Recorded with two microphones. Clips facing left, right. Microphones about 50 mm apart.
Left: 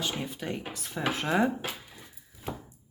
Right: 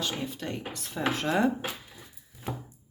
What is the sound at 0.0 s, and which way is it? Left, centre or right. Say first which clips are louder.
Speech: even; centre.